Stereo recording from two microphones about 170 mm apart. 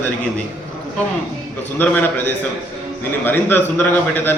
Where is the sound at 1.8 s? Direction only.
10° left (ahead or behind).